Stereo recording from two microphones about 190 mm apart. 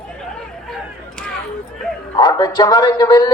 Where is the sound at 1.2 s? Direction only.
5° left (ahead or behind).